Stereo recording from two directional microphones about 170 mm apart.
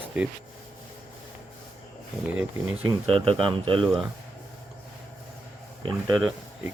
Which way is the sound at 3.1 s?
30° right (ahead or behind).